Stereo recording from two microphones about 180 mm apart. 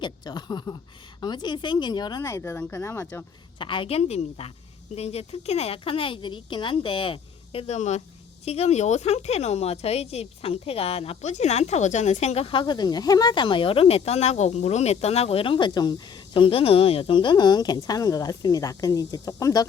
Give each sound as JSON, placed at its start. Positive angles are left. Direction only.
{"t": 0.0, "sound": "speech", "side_deg": 25}
{"t": 3.6, "sound": "speech", "side_deg": 30}